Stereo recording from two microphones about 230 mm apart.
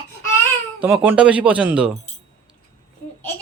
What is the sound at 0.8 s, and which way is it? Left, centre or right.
Speech, centre.